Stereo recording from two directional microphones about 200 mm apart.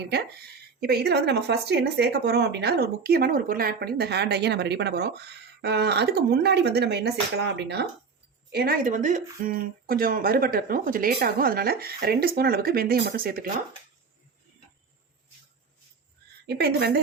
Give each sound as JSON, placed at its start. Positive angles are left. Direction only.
{"t": 0.1, "sound": "speech", "side_deg": -55}
{"t": 16.5, "sound": "speech", "side_deg": -55}